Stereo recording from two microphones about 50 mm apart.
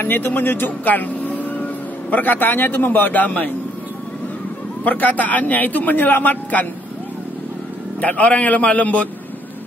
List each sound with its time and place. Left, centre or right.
0.0 s speech: left
4.8 s a man's voice: left
8.0 s a man's voice: left